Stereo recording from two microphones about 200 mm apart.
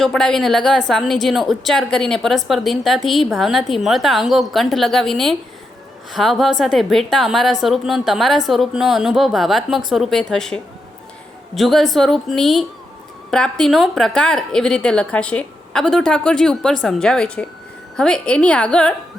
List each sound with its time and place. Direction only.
0.0 s a woman's voice: 5° left (ahead or behind)